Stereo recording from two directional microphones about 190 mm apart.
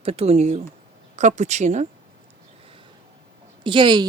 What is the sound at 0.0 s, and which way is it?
Speech, 30° right (ahead or behind).